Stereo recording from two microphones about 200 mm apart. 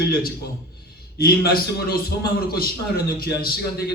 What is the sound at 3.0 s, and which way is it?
Speech, 50° left (ahead or behind).